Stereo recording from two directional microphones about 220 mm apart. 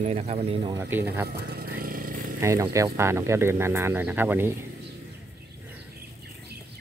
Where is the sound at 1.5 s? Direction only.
40° right (ahead or behind).